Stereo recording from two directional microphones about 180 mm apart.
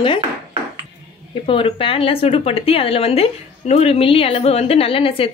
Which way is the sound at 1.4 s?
30° left (ahead or behind).